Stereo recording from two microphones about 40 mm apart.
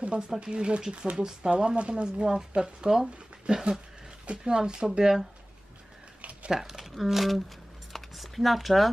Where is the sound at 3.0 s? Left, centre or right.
Right.